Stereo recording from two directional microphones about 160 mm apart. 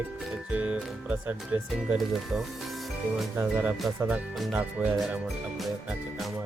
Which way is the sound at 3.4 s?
10° right (ahead or behind).